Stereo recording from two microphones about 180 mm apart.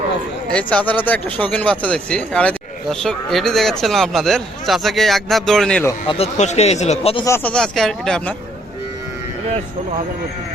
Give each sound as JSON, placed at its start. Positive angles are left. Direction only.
{"t": 0.5, "sound": "speech", "side_deg": 5}
{"t": 6.1, "sound": "speech", "side_deg": 35}
{"t": 7.3, "sound": "speech", "side_deg": 10}